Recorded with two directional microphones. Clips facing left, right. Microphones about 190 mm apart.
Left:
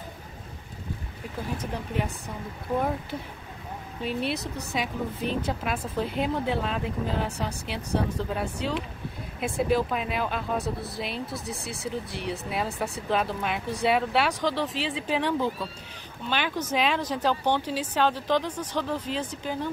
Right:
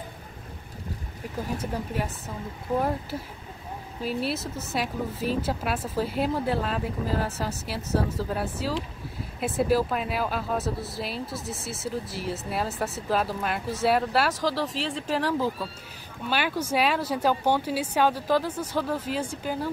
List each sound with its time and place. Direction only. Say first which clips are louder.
1.6 s speech: right 1 dB; 5° right (ahead or behind)
4.0 s speech: even; centre (ahead or behind)